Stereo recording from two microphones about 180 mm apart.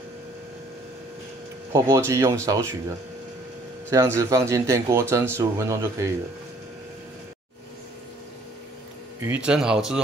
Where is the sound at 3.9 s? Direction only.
15° right (ahead or behind).